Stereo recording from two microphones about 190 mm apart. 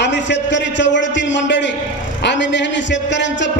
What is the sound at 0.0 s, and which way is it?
A man's voice, 70° left (ahead or behind).